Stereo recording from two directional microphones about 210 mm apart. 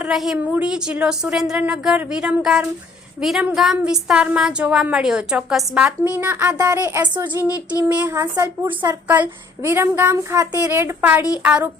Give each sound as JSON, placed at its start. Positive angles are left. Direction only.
{"t": 0.0, "sound": "a woman's voice", "side_deg": 0}
{"t": 7.3, "sound": "child singing", "side_deg": 15}
{"t": 7.8, "sound": "a woman's voice", "side_deg": -5}
{"t": 9.0, "sound": "speech", "side_deg": -5}